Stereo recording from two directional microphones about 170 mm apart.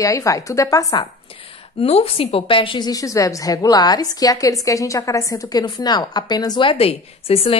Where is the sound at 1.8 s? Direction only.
35° left (ahead or behind).